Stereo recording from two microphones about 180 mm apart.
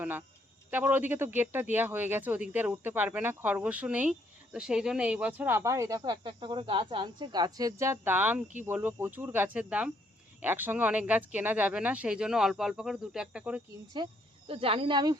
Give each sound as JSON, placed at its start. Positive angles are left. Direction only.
{"t": 0.0, "sound": "speech", "side_deg": -10}
{"t": 13.9, "sound": "speech", "side_deg": -25}